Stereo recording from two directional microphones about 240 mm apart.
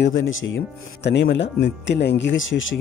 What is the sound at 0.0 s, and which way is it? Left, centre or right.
Speech, left.